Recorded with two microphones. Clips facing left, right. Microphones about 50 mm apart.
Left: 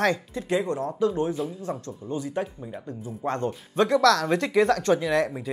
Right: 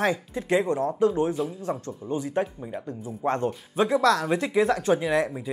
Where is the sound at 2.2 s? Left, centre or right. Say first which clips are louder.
Right 3 dB; right.